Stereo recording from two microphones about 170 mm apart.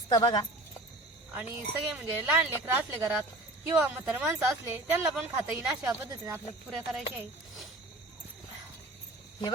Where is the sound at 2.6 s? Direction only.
15° right (ahead or behind).